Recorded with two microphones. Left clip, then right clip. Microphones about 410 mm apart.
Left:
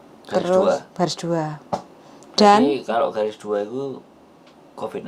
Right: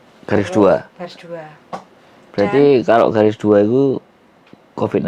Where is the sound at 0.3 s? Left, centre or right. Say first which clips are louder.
Right 4 dB; right.